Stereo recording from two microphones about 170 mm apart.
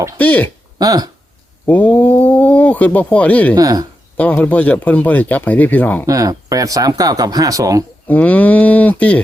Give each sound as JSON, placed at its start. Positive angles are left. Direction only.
{"t": 0.2, "sound": "speech", "side_deg": 10}
{"t": 0.8, "sound": "speech", "side_deg": -20}
{"t": 1.6, "sound": "speech", "side_deg": 10}
{"t": 3.5, "sound": "speech", "side_deg": -20}
{"t": 4.2, "sound": "speech", "side_deg": 10}
{"t": 6.1, "sound": "speech", "side_deg": -20}
{"t": 8.0, "sound": "speech", "side_deg": 10}